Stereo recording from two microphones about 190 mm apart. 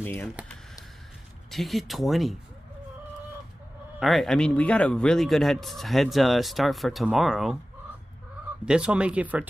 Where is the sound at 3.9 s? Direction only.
Centre (ahead or behind).